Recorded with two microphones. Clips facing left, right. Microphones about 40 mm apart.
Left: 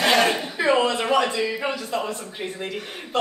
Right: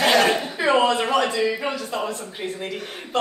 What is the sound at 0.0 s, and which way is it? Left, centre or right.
Chuckle, centre.